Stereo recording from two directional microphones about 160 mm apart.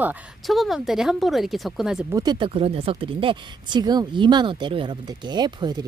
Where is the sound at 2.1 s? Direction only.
25° right (ahead or behind).